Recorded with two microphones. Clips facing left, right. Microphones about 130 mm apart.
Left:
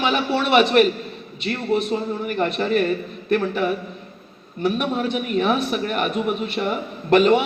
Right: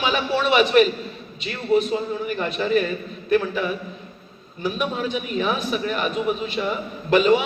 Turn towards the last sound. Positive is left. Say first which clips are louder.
# left 2 dB
turn(degrees=60)  # may be behind; listen again after turning